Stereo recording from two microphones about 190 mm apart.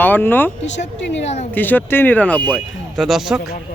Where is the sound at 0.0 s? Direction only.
10° left (ahead or behind).